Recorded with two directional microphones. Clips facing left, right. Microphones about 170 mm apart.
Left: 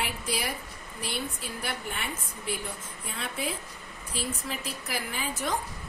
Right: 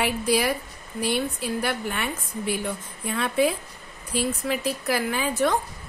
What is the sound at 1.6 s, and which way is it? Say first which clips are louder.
A woman's voice: right 5 dB; 70° right (ahead or behind).